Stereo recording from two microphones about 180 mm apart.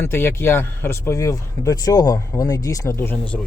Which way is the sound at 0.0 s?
15° left (ahead or behind).